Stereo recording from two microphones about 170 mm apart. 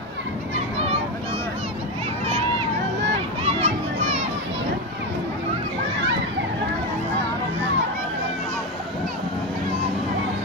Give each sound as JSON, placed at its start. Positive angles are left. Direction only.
{"t": 3.4, "sound": "children playing", "side_deg": -40}